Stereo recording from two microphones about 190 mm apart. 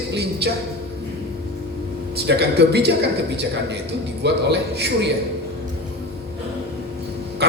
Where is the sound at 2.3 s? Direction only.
60° right (ahead or behind).